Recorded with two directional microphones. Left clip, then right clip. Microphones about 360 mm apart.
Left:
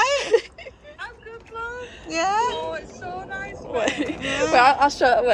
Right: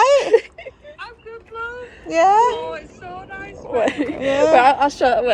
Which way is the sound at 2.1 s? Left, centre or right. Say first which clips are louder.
Right 8 dB; centre.